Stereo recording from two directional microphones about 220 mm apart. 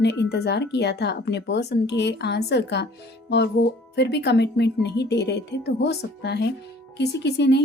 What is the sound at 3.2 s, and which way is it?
Music, 50° left (ahead or behind).